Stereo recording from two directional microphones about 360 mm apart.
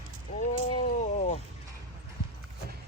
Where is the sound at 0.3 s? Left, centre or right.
Centre.